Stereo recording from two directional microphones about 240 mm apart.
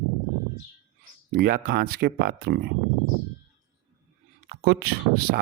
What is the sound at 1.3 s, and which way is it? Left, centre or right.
Speech, right.